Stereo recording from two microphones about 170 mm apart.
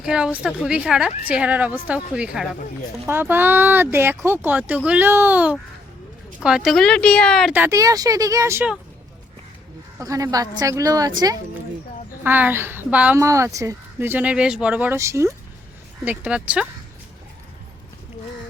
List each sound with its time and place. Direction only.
0.0 s a woman's voice: 5° right (ahead or behind)
7.5 s speech: 15° right (ahead or behind)
10.0 s speech: 20° right (ahead or behind)
12.2 s a woman's voice: 10° right (ahead or behind)